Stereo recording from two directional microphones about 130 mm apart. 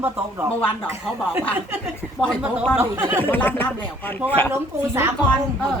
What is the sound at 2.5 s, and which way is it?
Speech, 10° right (ahead or behind).